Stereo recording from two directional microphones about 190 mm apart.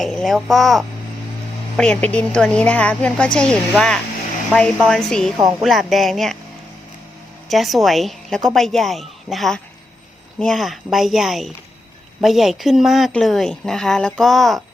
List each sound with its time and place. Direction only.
0.0 s speech: 5° left (ahead or behind)
5.4 s speech: 15° right (ahead or behind)
5.6 s speech: centre (ahead or behind)
7.4 s speech: centre (ahead or behind)